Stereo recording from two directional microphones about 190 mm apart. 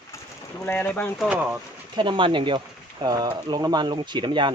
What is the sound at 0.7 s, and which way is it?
Speech, 10° left (ahead or behind).